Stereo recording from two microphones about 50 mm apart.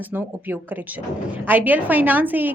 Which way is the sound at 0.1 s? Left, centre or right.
Right.